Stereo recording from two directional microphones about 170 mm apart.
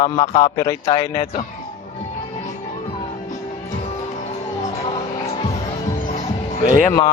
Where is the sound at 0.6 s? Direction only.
20° left (ahead or behind).